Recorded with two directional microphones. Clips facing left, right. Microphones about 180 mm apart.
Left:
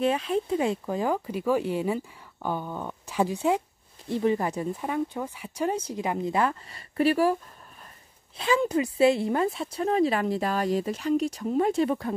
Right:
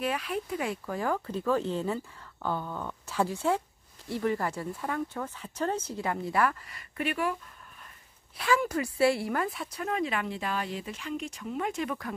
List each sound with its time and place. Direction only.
0.0 s speech: 25° left (ahead or behind)
8.4 s speech: 20° left (ahead or behind)